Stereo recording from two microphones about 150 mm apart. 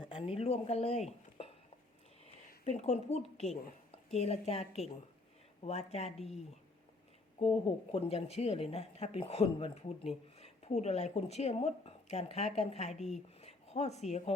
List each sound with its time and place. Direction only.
0.0 s speech: 40° left (ahead or behind)
2.6 s speech: 50° left (ahead or behind)
7.3 s a woman's voice: 40° left (ahead or behind)
13.4 s a sound: 45° left (ahead or behind)